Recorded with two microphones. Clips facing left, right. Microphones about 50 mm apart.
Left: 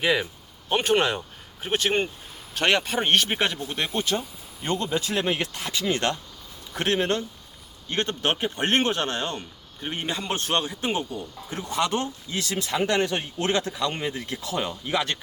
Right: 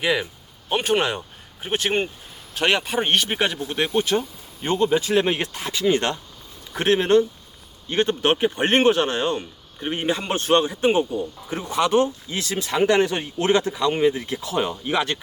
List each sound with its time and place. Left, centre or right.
0.0 s speech: centre
4.1 s speech: right
5.5 s speech: right